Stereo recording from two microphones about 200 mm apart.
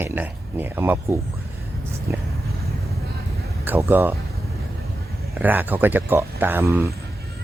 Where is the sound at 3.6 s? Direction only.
10° right (ahead or behind).